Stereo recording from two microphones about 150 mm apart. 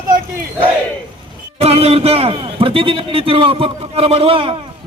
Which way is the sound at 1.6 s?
45° right (ahead or behind).